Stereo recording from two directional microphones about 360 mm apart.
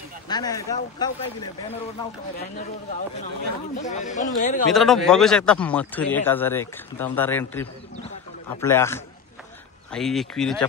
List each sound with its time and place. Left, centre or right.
0.3 s speech: centre
3.8 s speech: centre
4.7 s a man's voice: centre